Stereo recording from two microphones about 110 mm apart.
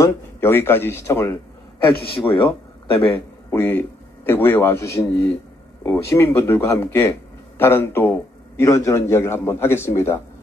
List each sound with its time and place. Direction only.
0.0 s speech: 20° left (ahead or behind)
2.1 s speech: 50° left (ahead or behind)
3.0 s a man's voice: 20° left (ahead or behind)